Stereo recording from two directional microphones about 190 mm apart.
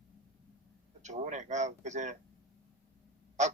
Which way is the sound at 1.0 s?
40° right (ahead or behind).